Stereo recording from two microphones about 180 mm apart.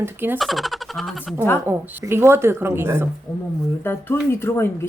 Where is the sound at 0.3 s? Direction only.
Centre (ahead or behind).